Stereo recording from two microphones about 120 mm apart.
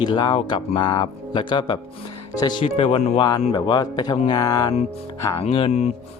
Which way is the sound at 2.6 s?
55° left (ahead or behind).